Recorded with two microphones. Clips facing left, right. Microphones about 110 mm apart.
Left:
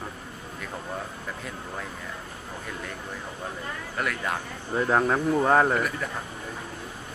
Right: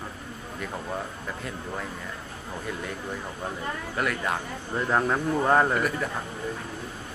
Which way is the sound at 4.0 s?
Centre (ahead or behind).